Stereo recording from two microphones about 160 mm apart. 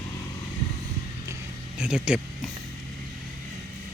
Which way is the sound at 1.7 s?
5° right (ahead or behind).